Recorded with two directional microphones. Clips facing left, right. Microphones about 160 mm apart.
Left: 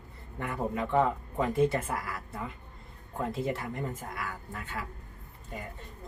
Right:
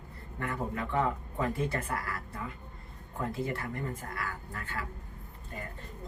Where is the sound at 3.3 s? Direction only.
20° left (ahead or behind).